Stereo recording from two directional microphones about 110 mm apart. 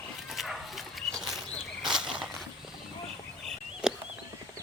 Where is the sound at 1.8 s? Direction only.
5° right (ahead or behind).